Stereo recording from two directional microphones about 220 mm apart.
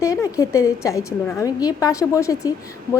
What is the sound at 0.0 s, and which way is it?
A woman's voice, 15° left (ahead or behind).